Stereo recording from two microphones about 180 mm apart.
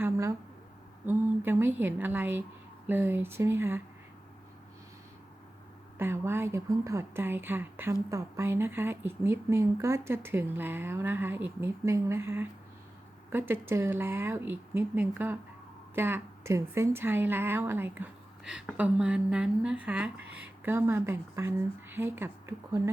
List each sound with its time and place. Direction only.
0.0 s a sound: 15° right (ahead or behind)
1.0 s a woman's voice: 10° right (ahead or behind)
6.0 s a woman's voice: 15° right (ahead or behind)